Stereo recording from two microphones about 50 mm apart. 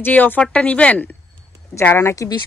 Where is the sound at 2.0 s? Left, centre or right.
Left.